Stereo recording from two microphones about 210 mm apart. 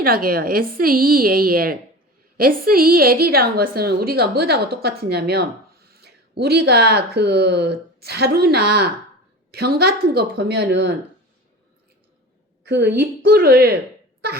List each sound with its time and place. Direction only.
0.0 s a woman's voice: 45° right (ahead or behind)
12.6 s a woman's voice: 55° right (ahead or behind)